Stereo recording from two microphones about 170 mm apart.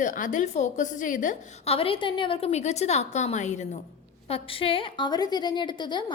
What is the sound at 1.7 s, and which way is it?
A woman's voice, 35° left (ahead or behind).